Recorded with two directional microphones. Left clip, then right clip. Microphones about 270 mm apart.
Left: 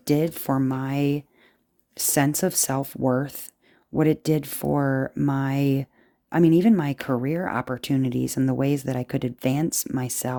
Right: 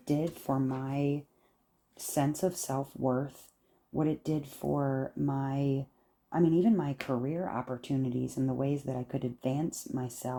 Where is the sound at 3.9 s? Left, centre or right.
Left.